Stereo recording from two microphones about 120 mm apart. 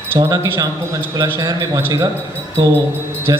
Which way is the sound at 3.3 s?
30° right (ahead or behind).